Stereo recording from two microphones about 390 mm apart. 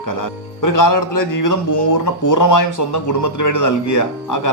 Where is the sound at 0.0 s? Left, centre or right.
Left.